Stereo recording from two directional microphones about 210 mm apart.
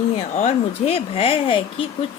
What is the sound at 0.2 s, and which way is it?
A woman's voice, 35° left (ahead or behind).